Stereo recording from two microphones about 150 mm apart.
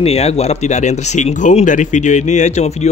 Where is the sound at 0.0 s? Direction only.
45° left (ahead or behind).